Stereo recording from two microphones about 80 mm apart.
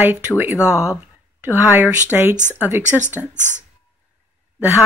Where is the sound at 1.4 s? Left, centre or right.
Right.